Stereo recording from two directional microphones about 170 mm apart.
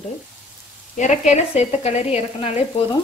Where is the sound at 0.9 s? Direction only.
45° left (ahead or behind).